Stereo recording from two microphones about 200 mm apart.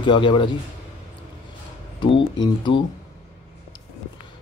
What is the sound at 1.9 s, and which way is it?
Speech, 25° left (ahead or behind).